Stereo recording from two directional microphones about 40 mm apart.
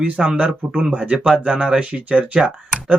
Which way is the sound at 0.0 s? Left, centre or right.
Right.